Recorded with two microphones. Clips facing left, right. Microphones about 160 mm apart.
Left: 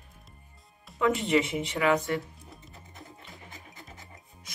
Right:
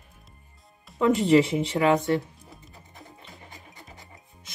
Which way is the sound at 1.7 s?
25° right (ahead or behind).